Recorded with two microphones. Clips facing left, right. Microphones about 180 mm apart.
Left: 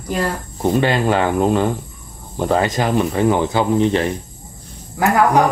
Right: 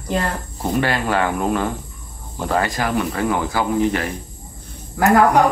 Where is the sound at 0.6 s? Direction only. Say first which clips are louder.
Left 4 dB; 20° left (ahead or behind).